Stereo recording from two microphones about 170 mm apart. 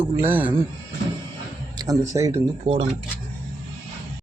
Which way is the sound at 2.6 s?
30° right (ahead or behind).